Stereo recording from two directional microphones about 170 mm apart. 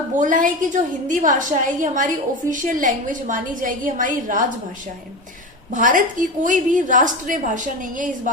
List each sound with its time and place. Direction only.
0.2 s a woman's voice: 50° right (ahead or behind)
5.7 s a woman's voice: 50° right (ahead or behind)